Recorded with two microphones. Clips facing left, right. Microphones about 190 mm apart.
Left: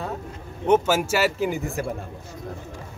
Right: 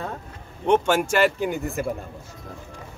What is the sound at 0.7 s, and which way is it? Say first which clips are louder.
Speech: even; 5° left (ahead or behind).